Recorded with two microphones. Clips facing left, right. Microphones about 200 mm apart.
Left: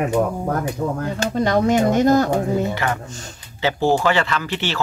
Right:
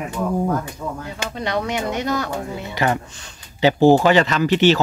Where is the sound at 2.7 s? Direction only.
15° right (ahead or behind).